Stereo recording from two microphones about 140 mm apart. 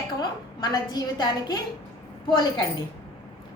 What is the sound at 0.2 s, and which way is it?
A woman's voice, 30° left (ahead or behind).